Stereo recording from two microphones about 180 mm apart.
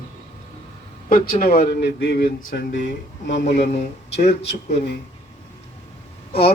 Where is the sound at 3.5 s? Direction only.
35° left (ahead or behind).